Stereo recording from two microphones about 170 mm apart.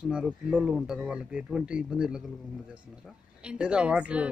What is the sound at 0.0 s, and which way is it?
A woman's voice, 5° right (ahead or behind).